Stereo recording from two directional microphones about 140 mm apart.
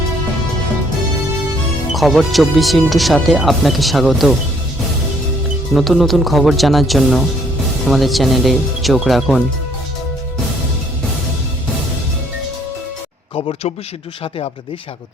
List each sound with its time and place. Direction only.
1.9 s speech: centre (ahead or behind)
5.7 s speech: centre (ahead or behind)
13.3 s speech: 45° left (ahead or behind)